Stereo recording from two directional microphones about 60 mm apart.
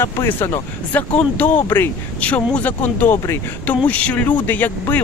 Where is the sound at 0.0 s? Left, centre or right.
Left.